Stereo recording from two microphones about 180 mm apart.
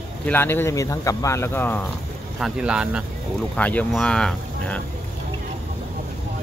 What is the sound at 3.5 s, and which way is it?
Speech, 10° left (ahead or behind).